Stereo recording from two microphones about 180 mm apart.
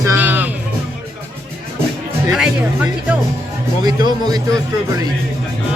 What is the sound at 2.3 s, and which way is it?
Speech, 5° right (ahead or behind).